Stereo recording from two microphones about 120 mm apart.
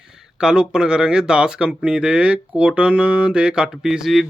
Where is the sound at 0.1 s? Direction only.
5° right (ahead or behind).